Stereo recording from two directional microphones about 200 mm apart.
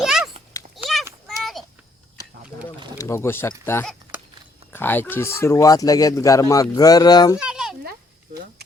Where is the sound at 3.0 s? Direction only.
15° left (ahead or behind).